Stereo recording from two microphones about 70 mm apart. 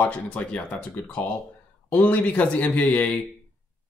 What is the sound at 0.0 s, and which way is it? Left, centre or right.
Speech, left.